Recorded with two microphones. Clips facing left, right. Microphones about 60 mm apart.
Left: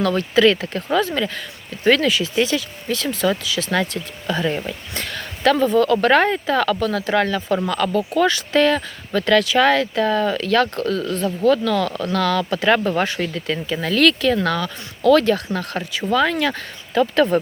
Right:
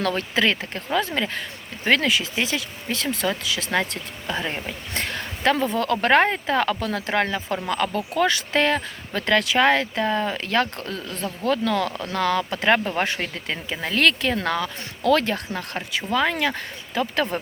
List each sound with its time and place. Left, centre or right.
0.0 s speech: right
0.3 s speech: right; by 17.2 s centre